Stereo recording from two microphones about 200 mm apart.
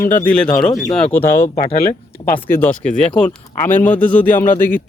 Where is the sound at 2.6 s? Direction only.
5° left (ahead or behind).